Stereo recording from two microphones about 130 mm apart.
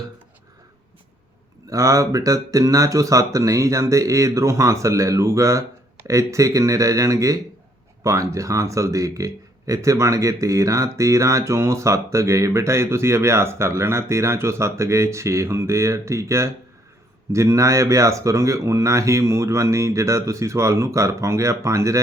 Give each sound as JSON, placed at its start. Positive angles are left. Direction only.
{"t": 1.7, "sound": "speech", "side_deg": -25}